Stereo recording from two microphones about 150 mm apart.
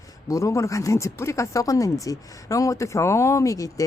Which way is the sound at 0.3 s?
20° left (ahead or behind).